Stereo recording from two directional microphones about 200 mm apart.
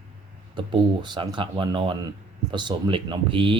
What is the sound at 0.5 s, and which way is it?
Speech, 25° right (ahead or behind).